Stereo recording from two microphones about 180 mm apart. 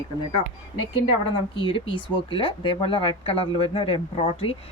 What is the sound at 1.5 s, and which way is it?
A woman's voice, 25° left (ahead or behind).